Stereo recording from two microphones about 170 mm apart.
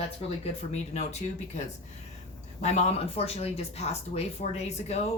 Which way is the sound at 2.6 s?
40° left (ahead or behind).